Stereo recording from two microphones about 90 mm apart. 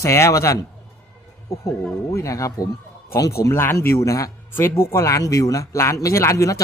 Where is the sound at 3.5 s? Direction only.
25° left (ahead or behind).